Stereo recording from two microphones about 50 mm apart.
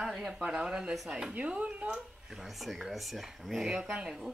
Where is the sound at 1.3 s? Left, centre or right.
Right.